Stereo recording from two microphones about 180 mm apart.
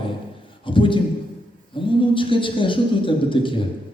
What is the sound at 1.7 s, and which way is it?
A woman's voice, 30° left (ahead or behind).